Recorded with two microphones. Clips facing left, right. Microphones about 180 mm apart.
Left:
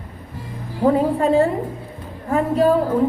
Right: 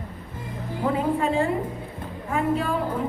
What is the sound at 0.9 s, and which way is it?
A woman's voice, 40° left (ahead or behind).